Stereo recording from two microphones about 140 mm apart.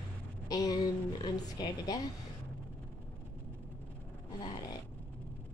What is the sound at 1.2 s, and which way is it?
Speech, 30° left (ahead or behind).